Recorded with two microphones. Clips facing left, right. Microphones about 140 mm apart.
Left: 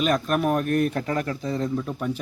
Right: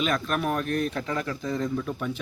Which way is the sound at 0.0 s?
45° left (ahead or behind).